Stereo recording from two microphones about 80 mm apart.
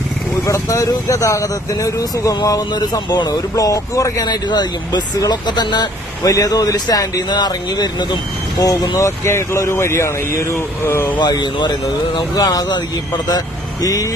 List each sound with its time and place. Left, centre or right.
0.4 s speech: left
4.3 s speech: left
6.2 s speech: left
7.3 s speech: left
9.0 s speech: left
11.2 s speech: left
13.8 s speech: left